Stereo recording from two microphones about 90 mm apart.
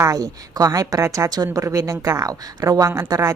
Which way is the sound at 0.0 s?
40° right (ahead or behind).